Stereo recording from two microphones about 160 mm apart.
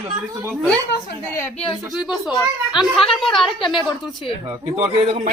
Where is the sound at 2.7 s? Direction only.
Centre (ahead or behind).